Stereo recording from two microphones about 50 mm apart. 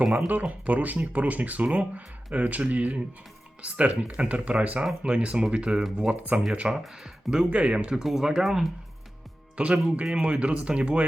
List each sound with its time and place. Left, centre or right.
0.0 s speech: centre
0.3 s speech: right
6.3 s speech: right
6.7 s speech: centre
7.5 s speech: right
7.9 s speech: centre
8.4 s speech: centre
9.6 s speech: right